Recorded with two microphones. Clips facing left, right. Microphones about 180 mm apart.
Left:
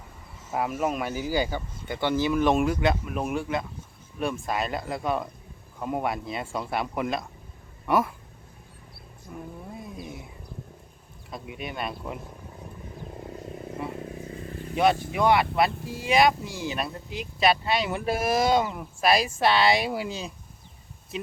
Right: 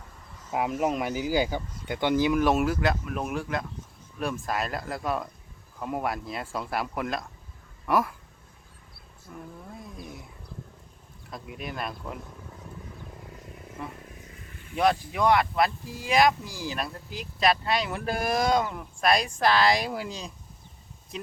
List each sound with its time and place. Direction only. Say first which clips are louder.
0.9 s speech: right 1 dB; 15° right (ahead or behind); by 8.1 s centre (ahead or behind)
9.3 s vehicle: left 3 dB; 10° left (ahead or behind)
9.6 s a sound: left 3 dB; 5° left (ahead or behind)
11.3 s speech: left 1 dB; centre (ahead or behind)
13.1 s frog: left 8 dB; 30° left (ahead or behind)
14.0 s vehicle: left 11 dB; 30° left (ahead or behind)
15.1 s speech: left 1 dB; 5° left (ahead or behind)